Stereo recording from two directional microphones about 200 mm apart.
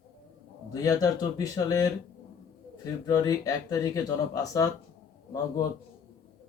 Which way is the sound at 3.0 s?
15° left (ahead or behind).